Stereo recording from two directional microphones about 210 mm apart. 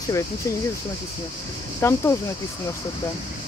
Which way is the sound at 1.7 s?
15° left (ahead or behind).